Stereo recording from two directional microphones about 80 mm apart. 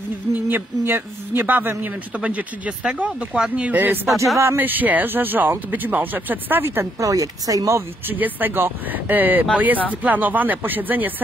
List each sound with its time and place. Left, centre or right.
0.3 s speech: right
7.0 s speech: right
8.1 s speech: right